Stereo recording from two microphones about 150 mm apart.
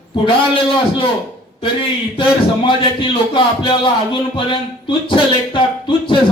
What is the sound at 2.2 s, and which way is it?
Speech, 35° left (ahead or behind).